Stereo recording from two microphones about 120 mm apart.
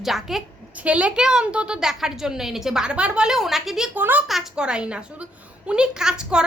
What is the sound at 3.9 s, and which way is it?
Speech, 15° right (ahead or behind).